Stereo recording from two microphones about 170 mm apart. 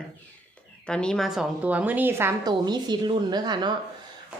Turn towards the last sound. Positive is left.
turn(degrees=-25)  # may be behind; listen again after turning